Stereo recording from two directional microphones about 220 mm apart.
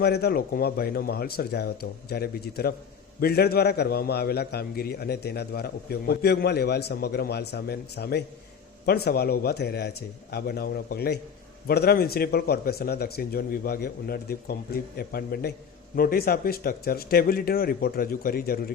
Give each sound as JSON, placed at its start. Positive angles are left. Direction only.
{"t": 0.0, "sound": "a man's voice", "side_deg": 45}